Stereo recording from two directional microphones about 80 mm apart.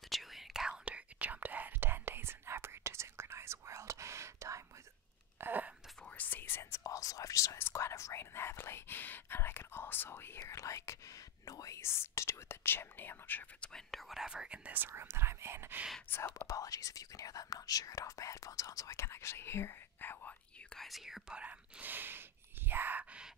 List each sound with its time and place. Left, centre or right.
0.1 s whispering: centre; by 4.6 s right
5.4 s a sound: right
6.0 s whispering: left
6.8 s whispering: left
10.4 s whispering: left
13.6 s whispering: centre
14.9 s whispering: right
16.1 s whispering: left
16.4 s whispering: left
20.7 s whispering: centre; by 23.2 s right